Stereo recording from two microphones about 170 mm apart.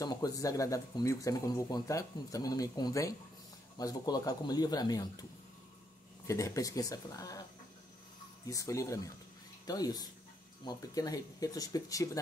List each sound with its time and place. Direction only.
0.0 s speech: 20° left (ahead or behind)
6.2 s speech: 20° left (ahead or behind)
8.5 s speech: 20° left (ahead or behind)